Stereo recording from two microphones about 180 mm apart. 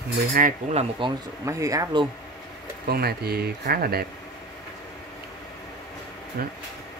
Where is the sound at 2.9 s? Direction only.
60° right (ahead or behind).